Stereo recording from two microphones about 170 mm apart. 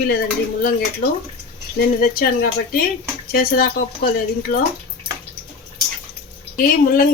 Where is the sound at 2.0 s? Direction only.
60° left (ahead or behind).